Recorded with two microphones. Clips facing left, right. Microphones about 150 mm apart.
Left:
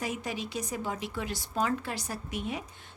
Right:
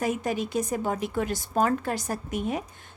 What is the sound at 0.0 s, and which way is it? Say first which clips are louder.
Speech: right 7 dB; 50° right (ahead or behind).